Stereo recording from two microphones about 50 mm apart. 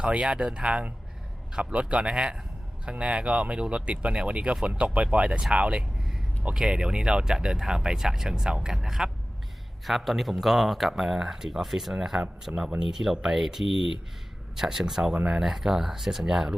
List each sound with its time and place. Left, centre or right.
0.0 s speech: right